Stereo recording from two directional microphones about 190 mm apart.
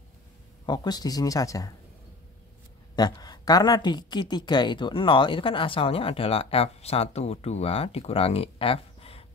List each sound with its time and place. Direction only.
0.7 s speech: 20° left (ahead or behind)
3.0 s speech: 20° left (ahead or behind)